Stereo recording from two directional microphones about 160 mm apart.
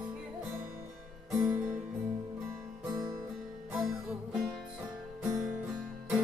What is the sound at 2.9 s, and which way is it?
Music, 25° right (ahead or behind).